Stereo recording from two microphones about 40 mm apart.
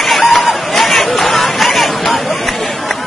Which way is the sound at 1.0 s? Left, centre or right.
Centre.